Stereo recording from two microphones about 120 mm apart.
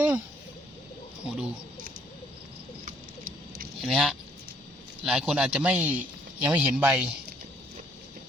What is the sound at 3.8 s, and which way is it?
A man's voice, centre (ahead or behind).